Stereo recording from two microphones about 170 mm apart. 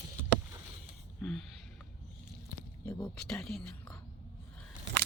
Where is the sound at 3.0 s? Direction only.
5° left (ahead or behind).